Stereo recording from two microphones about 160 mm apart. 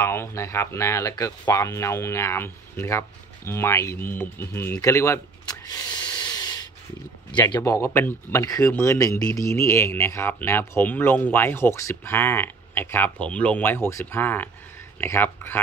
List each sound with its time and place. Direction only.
0.0 s speech: 15° left (ahead or behind)